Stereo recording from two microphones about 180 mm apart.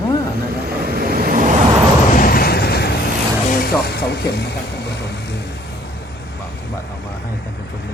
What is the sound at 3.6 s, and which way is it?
Speech, 60° left (ahead or behind).